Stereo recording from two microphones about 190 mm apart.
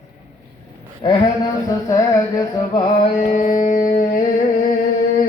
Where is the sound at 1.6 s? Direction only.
20° left (ahead or behind); by 4.2 s 45° left (ahead or behind).